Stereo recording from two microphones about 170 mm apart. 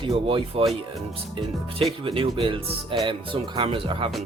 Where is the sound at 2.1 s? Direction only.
30° right (ahead or behind).